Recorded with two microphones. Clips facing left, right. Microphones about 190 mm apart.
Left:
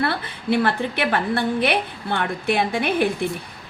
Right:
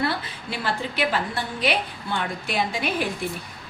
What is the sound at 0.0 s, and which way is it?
A woman's voice, 60° left (ahead or behind).